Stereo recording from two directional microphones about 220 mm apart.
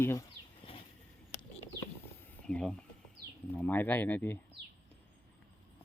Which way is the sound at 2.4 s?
5° left (ahead or behind).